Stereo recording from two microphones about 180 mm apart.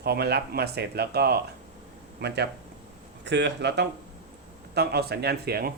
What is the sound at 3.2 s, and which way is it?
Speech, 75° right (ahead or behind).